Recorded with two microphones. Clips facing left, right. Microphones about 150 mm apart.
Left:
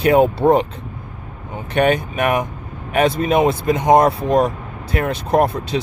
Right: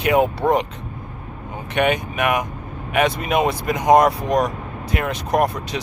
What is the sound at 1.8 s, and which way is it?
Speech, 35° left (ahead or behind).